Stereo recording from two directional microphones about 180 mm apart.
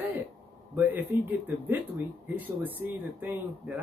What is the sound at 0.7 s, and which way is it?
Speech, 10° right (ahead or behind).